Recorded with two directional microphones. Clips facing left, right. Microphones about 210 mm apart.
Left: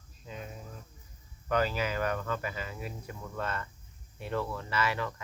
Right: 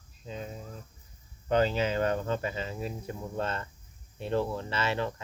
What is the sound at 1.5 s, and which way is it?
Speech, 25° right (ahead or behind).